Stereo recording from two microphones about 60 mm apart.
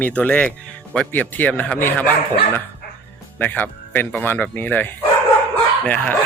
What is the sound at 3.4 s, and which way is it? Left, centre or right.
Speech, left.